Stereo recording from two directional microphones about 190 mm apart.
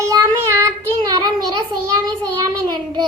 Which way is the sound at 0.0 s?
15° right (ahead or behind).